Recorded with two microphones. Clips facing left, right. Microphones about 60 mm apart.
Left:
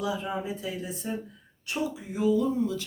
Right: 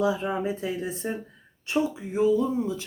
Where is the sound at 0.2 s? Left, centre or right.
Right.